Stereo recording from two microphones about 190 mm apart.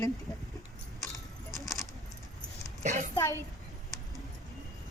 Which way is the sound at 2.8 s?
40° right (ahead or behind).